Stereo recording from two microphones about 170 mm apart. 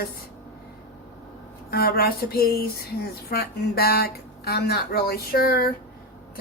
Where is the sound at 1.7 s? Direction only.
65° left (ahead or behind).